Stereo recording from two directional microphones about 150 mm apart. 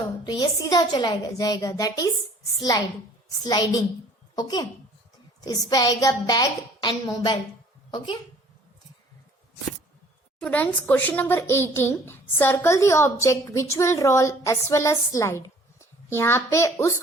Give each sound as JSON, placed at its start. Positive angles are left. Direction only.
{"t": 0.3, "sound": "a woman's voice", "side_deg": 30}
{"t": 3.4, "sound": "a woman's voice", "side_deg": 25}
{"t": 10.4, "sound": "speech", "side_deg": 10}